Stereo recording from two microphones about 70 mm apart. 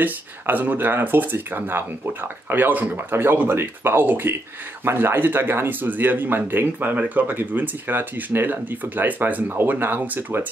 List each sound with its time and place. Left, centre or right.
0.0 s speech: right